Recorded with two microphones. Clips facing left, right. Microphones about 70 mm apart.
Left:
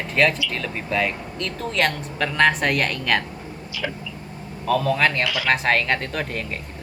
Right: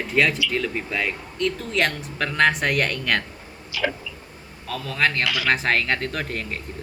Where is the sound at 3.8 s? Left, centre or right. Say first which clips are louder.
Right 4 dB; right.